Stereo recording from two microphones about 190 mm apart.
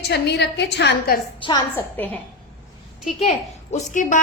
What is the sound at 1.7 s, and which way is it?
Speech, 10° left (ahead or behind).